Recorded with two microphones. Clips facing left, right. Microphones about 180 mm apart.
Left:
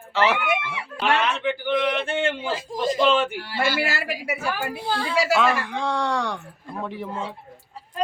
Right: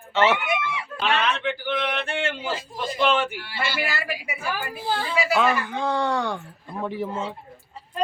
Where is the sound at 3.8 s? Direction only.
80° left.